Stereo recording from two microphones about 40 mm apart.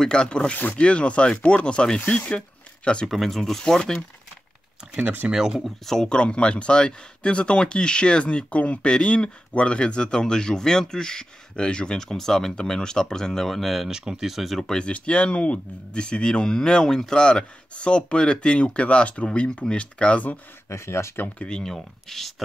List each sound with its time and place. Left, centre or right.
0.0 s speech: left
3.1 s speech: centre
5.3 s speech: centre
5.6 s speech: centre
6.0 s speech: left; by 13.8 s centre
13.8 s speech: centre
14.6 s speech: centre
14.9 s speech: left
21.5 s speech: centre
21.7 s speech: centre